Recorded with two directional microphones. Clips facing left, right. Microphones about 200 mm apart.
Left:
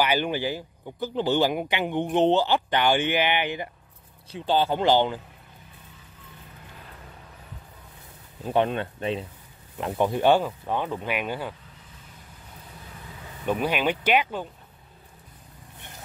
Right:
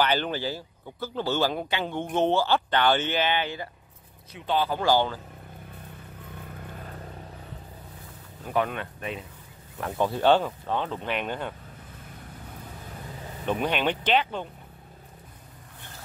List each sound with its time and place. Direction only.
0.0 s speech: 10° left (ahead or behind)
4.3 s speech: 30° left (ahead or behind)
8.5 s speech: 25° left (ahead or behind)
9.8 s speech: 20° left (ahead or behind)
13.5 s speech: 5° left (ahead or behind)